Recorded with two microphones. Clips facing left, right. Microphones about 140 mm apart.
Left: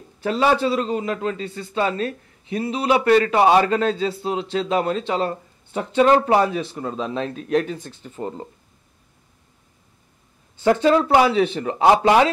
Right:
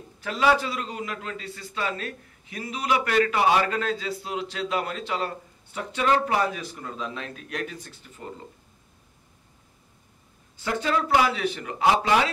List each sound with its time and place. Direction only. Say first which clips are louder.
0.2 s a man's voice: left 4 dB; 30° left (ahead or behind)
10.8 s speech: left 5 dB; 30° left (ahead or behind)